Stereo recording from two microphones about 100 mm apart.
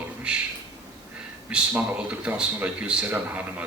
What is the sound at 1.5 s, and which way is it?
Speech, 15° right (ahead or behind).